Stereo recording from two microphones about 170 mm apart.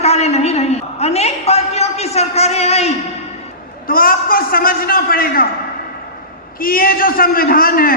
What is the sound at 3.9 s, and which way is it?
A man's voice, 55° left (ahead or behind).